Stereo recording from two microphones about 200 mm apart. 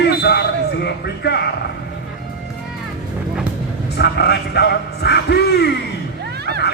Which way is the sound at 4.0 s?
55° left (ahead or behind).